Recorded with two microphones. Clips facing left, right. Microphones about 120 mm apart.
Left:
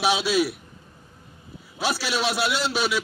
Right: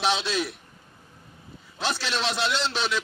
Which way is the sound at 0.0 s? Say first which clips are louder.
Left 4 dB; 10° left (ahead or behind).